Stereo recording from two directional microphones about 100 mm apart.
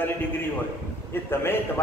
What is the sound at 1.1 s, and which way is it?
Speech, 25° left (ahead or behind).